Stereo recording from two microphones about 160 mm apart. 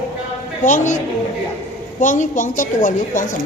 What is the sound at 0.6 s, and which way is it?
Speech, 50° left (ahead or behind).